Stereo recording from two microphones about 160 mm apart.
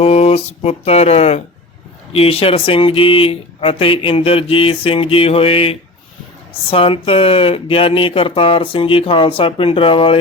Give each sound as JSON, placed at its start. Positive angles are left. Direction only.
{"t": 0.0, "sound": "speech", "side_deg": 40}